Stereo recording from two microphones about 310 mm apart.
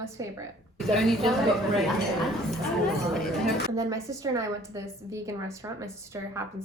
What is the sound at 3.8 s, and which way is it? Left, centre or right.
A woman's voice, centre.